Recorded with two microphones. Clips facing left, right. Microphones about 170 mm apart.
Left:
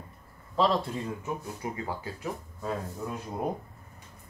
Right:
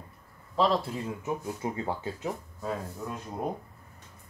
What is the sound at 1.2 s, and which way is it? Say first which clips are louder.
Speech: right 3 dB; 25° right (ahead or behind).